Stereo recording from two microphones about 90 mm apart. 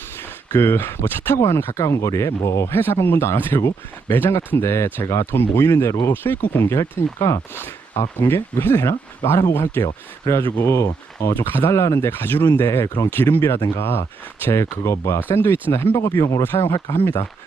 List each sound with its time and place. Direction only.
0.5 s speech: 25° left (ahead or behind)
6.1 s speech: 20° left (ahead or behind)
7.5 s speech: 25° left (ahead or behind)
9.8 s speech: 35° left (ahead or behind)
16.4 s speech: 25° left (ahead or behind)